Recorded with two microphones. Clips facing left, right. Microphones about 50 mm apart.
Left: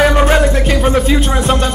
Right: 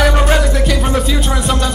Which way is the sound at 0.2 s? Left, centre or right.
Left.